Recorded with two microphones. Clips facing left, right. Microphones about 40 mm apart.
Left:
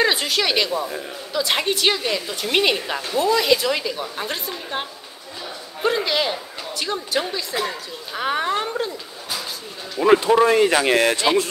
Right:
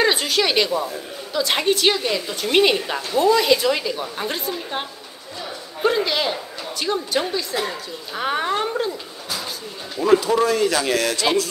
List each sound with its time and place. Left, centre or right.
0.0 s a woman's voice: centre
9.9 s speech: left